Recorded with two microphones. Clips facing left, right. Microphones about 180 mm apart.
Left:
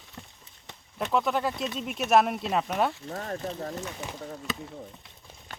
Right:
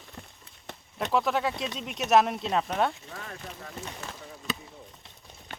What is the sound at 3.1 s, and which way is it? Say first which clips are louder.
Speech: left 8 dB; 40° left (ahead or behind).